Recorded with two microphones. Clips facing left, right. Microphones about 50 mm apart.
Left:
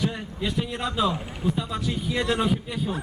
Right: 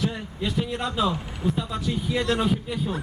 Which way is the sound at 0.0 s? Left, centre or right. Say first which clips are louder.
Even; centre.